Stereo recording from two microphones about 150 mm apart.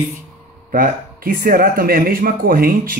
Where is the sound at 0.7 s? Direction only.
65° right (ahead or behind).